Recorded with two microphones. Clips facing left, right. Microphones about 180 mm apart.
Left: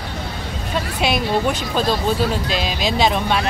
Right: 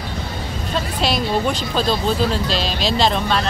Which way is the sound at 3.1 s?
10° left (ahead or behind).